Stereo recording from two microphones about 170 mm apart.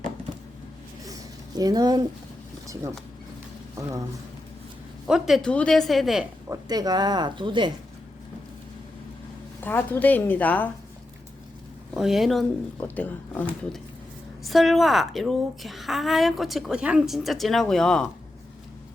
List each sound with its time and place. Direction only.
1.0 s a sound: 20° right (ahead or behind)
5.0 s a woman's voice: 5° right (ahead or behind)
6.5 s speech: 20° right (ahead or behind)
9.6 s a woman's voice: 10° left (ahead or behind)
11.9 s a woman's voice: centre (ahead or behind)
14.4 s a woman's voice: centre (ahead or behind)